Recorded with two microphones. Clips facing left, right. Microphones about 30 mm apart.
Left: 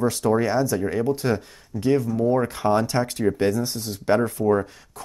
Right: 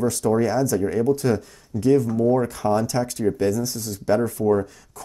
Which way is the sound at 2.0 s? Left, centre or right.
Centre.